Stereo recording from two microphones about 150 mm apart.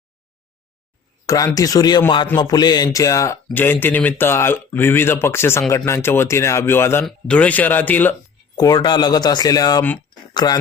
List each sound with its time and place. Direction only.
1.5 s a man's voice: 25° left (ahead or behind)
8.5 s speech: 25° left (ahead or behind)